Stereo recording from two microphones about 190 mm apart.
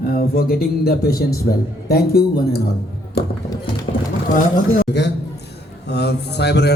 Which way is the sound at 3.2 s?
55° left (ahead or behind).